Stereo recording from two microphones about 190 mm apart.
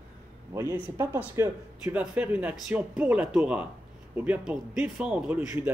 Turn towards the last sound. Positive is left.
turn(degrees=-10)  # may be behind; listen again after turning